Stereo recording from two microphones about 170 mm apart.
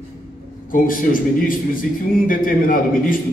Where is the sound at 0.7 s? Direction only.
55° left (ahead or behind).